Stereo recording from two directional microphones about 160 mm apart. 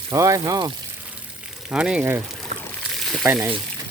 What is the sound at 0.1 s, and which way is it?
Speech, 20° right (ahead or behind).